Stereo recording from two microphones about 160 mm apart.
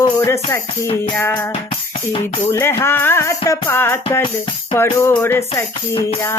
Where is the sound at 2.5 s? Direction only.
15° left (ahead or behind).